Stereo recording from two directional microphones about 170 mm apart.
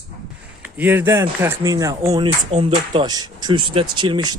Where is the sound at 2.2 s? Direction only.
30° right (ahead or behind).